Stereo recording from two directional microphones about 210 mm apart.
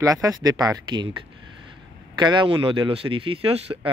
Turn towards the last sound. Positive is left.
turn(degrees=-25)  # may be behind; listen again after turning